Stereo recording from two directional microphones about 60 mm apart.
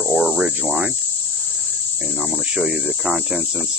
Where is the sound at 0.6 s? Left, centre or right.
Right.